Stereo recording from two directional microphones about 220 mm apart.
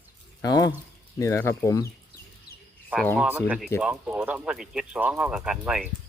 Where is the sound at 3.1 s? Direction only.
10° right (ahead or behind).